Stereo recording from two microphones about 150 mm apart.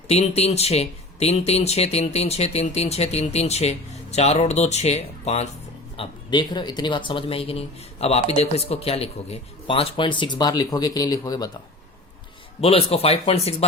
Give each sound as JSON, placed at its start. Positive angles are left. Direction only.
{"t": 0.1, "sound": "speech", "side_deg": 45}
{"t": 6.0, "sound": "speech", "side_deg": 30}
{"t": 12.6, "sound": "speech", "side_deg": 40}